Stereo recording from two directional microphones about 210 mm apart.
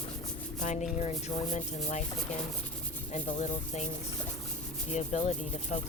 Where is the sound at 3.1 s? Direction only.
35° left (ahead or behind).